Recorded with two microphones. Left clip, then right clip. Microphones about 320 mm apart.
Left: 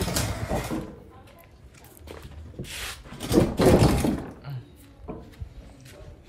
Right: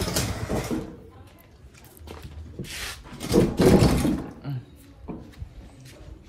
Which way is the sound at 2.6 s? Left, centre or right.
Centre.